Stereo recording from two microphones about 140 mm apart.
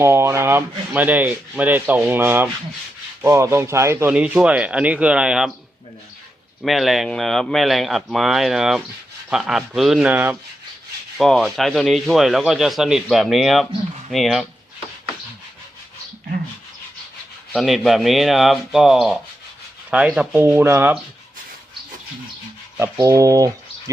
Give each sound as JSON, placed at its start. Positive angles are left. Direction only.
{"t": 0.0, "sound": "rub", "side_deg": -20}
{"t": 3.2, "sound": "speech", "side_deg": -20}
{"t": 4.1, "sound": "rub", "side_deg": -10}
{"t": 6.6, "sound": "speech", "side_deg": 0}
{"t": 11.2, "sound": "speech", "side_deg": 0}
{"t": 17.6, "sound": "speech", "side_deg": 0}
{"t": 19.9, "sound": "rub", "side_deg": -10}
{"t": 22.8, "sound": "speech", "side_deg": -25}